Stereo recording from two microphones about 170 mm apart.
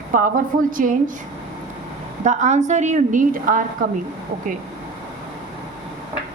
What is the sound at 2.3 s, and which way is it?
A woman's voice, 45° right (ahead or behind).